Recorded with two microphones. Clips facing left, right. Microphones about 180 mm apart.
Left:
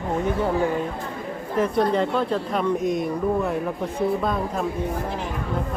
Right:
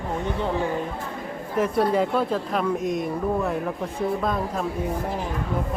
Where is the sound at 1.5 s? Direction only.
5° right (ahead or behind).